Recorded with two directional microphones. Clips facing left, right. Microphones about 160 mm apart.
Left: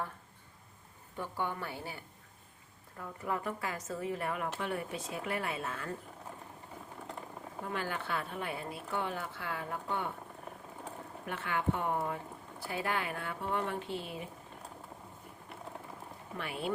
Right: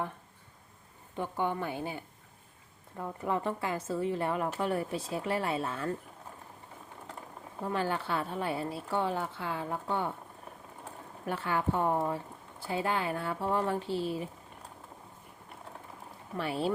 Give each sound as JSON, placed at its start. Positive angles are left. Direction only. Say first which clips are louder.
{"t": 1.1, "sound": "a woman's voice", "louder": "right 5 dB", "side_deg": -20}
{"t": 7.7, "sound": "speech", "louder": "right 5 dB", "side_deg": -30}
{"t": 11.3, "sound": "speech", "louder": "right 3 dB", "side_deg": -35}
{"t": 16.4, "sound": "speech", "louder": "right 6 dB", "side_deg": -30}